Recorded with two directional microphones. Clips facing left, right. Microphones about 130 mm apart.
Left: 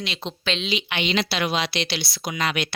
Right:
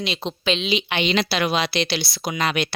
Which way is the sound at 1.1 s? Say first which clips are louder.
Right 2 dB; 45° right (ahead or behind).